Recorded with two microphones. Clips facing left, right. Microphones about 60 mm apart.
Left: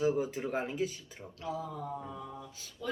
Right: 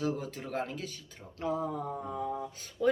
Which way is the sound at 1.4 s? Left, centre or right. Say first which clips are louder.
Right 5 dB; right.